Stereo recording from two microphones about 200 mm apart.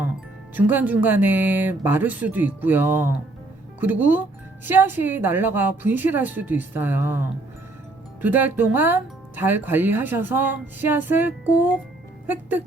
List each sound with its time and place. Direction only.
0.5 s speech: 10° right (ahead or behind)